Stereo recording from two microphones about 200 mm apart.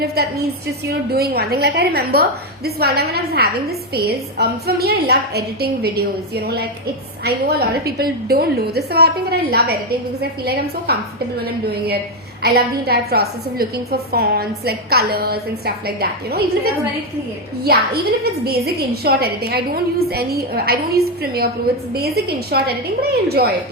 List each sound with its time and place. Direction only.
0.0 s a woman's voice: 55° right (ahead or behind)
12.4 s a woman's voice: 55° right (ahead or behind)
17.6 s a woman's voice: 50° right (ahead or behind)